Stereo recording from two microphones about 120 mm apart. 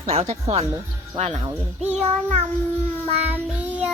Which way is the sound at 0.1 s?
60° right (ahead or behind).